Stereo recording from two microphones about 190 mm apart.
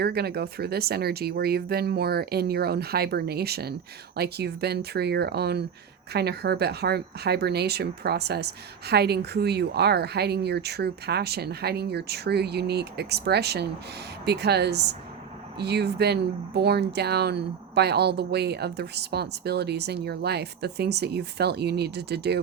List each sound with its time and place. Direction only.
0.0 s speech: 60° right (ahead or behind)